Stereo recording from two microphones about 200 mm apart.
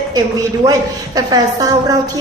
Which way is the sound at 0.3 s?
20° right (ahead or behind).